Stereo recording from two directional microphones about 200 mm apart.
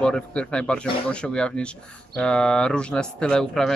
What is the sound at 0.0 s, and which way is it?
Speech, 5° left (ahead or behind).